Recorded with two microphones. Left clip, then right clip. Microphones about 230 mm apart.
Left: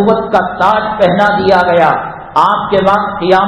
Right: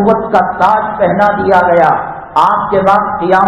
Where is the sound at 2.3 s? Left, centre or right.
Left.